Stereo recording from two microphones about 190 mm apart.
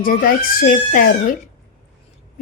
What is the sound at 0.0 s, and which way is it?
Speech, 50° left (ahead or behind).